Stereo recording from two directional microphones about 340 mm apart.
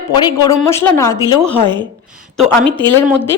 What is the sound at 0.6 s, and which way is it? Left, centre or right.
Speech, centre.